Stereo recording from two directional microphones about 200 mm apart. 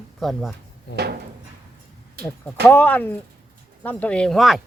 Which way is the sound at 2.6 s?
10° left (ahead or behind).